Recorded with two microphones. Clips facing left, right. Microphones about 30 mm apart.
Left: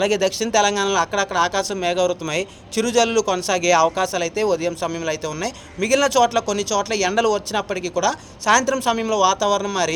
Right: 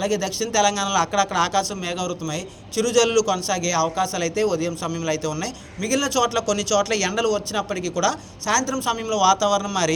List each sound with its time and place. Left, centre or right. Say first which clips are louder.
0.0 s speech: left 4 dB; left
1.7 s speech: left 7 dB; left
2.0 s speech: left 5 dB; left
2.7 s speech: left 1 dB; left
3.2 s speech: left 1 dB; left
3.4 s speech: left 6 dB; left
3.8 s speech: left 3 dB; left
5.8 s speech: left 5 dB; left
6.2 s speech: left 2 dB; left
6.7 s speech: right 2 dB; centre
7.3 s speech: left 2 dB; left
8.4 s a woman's voice: left 5 dB; left
8.8 s speech: left 2 dB; left